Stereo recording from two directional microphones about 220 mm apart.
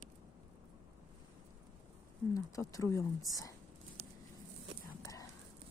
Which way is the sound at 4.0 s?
30° right (ahead or behind).